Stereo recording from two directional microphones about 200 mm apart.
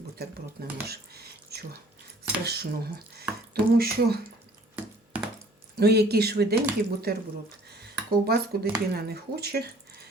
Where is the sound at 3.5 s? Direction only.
50° right (ahead or behind).